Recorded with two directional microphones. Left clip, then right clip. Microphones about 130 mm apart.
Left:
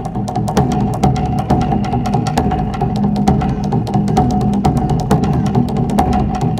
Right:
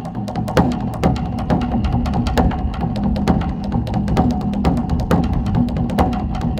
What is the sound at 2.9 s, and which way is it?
Music, 25° left (ahead or behind).